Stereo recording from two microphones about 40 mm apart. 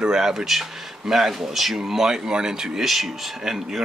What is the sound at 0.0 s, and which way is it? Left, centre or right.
Speech, centre.